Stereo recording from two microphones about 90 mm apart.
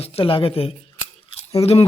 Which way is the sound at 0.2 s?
85° left.